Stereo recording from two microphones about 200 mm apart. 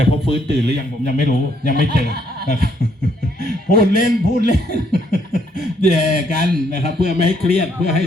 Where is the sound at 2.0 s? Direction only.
55° right (ahead or behind).